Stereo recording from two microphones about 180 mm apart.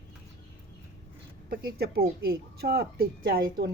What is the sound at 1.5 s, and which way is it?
A woman's voice, 60° right (ahead or behind).